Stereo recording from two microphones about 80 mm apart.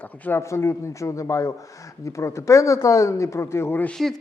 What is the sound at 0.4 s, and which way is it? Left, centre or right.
Speech, left.